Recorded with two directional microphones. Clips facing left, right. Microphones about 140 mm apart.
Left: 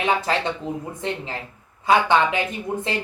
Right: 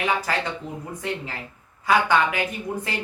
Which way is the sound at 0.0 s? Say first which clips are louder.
Left 3 dB; 25° left (ahead or behind).